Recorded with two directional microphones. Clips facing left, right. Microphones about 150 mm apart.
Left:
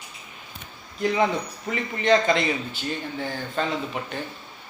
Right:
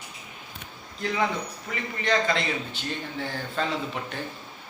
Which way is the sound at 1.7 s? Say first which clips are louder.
Left 6 dB; 20° left (ahead or behind).